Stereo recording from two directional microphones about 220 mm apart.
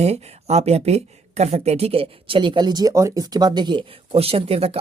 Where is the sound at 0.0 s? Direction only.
30° right (ahead or behind).